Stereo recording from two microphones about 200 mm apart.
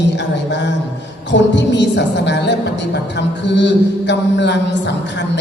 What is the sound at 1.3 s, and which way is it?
A woman's voice, 60° left (ahead or behind).